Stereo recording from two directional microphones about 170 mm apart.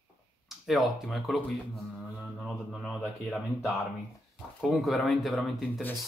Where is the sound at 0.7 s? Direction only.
Centre (ahead or behind).